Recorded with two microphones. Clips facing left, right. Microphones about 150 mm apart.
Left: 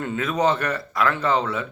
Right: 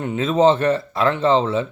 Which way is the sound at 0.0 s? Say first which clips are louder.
Right 6 dB; 20° right (ahead or behind).